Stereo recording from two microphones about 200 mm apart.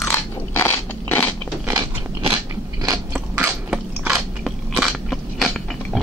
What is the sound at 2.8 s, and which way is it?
Biting, 15° right (ahead or behind).